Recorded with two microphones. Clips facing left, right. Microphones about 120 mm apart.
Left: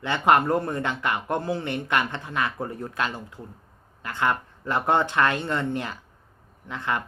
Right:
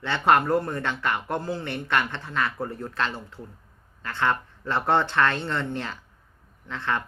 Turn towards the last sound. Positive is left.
turn(degrees=15)  # may be behind; listen again after turning